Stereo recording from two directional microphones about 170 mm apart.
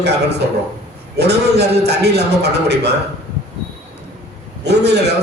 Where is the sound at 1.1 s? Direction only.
75° right (ahead or behind).